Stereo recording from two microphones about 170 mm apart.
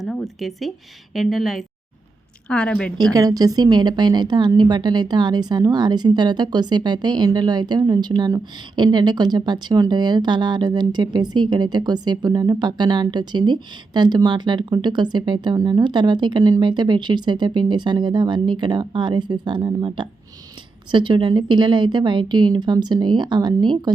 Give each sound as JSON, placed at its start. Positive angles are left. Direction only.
{"t": 0.0, "sound": "speech", "side_deg": 0}
{"t": 3.2, "sound": "a woman's voice", "side_deg": -20}